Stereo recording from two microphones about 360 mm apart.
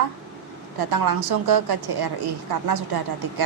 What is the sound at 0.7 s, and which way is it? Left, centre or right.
A woman's voice, right.